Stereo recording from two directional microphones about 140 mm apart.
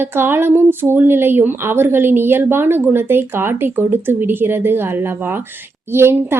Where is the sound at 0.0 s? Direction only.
15° right (ahead or behind).